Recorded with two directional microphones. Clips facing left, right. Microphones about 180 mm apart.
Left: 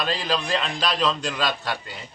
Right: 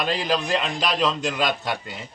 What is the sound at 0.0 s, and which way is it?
A man's voice, 15° right (ahead or behind).